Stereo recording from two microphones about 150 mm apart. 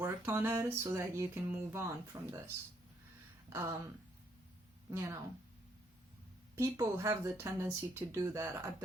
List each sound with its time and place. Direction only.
0.0 s music: 15° right (ahead or behind)
3.5 s speech: 20° right (ahead or behind)
4.9 s speech: 20° right (ahead or behind)
6.6 s speech: 20° right (ahead or behind)